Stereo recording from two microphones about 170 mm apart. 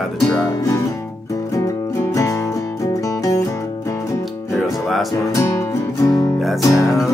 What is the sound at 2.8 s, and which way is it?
Music, 20° left (ahead or behind).